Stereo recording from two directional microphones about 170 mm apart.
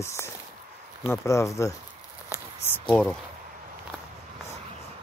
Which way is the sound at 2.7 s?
5° left (ahead or behind).